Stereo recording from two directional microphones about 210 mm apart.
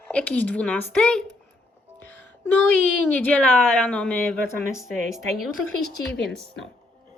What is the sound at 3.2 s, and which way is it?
Speech, 5° left (ahead or behind).